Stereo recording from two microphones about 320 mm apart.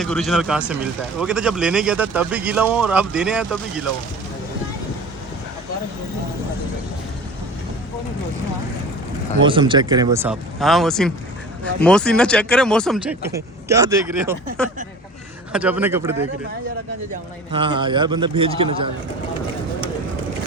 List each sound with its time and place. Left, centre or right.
0.0 s speech: centre
9.4 s speech: centre
14.6 s speech: centre
17.5 s speech: centre